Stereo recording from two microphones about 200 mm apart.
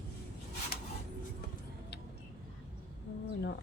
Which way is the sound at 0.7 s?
50° left (ahead or behind).